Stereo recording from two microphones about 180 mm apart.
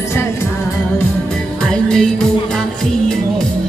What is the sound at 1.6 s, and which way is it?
Music, 5° left (ahead or behind).